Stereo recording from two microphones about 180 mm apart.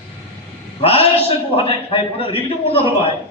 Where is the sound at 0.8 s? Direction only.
35° left (ahead or behind).